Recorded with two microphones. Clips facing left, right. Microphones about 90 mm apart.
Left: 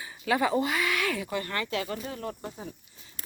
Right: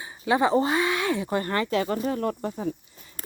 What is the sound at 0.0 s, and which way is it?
Speech, 25° right (ahead or behind).